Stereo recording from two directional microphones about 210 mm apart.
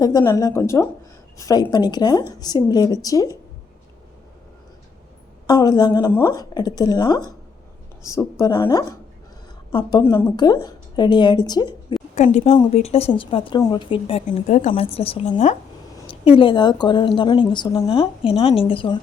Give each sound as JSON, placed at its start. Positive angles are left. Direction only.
{"t": 0.0, "sound": "speech", "side_deg": 20}
{"t": 5.5, "sound": "speech", "side_deg": 20}
{"t": 10.0, "sound": "speech", "side_deg": 15}
{"t": 12.1, "sound": "a woman's voice", "side_deg": 35}